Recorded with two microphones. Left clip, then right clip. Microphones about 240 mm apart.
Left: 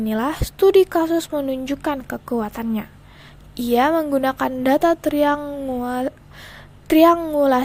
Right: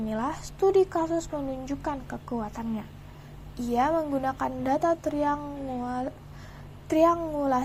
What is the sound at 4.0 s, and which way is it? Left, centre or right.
Speech, left.